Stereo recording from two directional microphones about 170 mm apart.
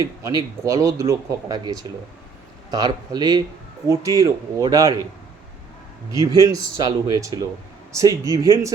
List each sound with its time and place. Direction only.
0.2 s speech: 20° right (ahead or behind)
6.1 s speech: 20° right (ahead or behind)